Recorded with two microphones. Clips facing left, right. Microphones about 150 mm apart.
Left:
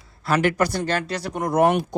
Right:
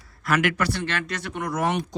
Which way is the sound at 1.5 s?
60° left (ahead or behind).